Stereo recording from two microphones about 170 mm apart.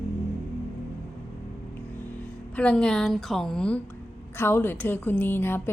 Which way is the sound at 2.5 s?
5° left (ahead or behind).